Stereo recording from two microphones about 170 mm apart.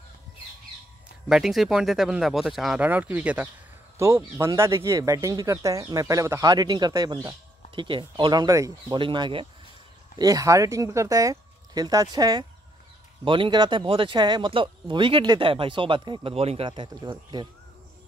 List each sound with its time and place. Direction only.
1.3 s speech: centre (ahead or behind); by 17.5 s 25° right (ahead or behind)